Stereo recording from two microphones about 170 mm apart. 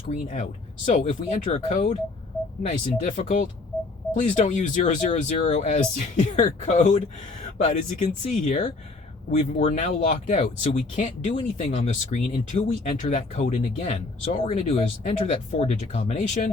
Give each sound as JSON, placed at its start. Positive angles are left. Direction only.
{"t": 0.1, "sound": "speech", "side_deg": 45}